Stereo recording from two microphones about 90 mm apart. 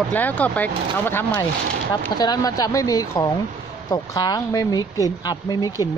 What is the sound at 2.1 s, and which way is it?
Speech, 50° left (ahead or behind).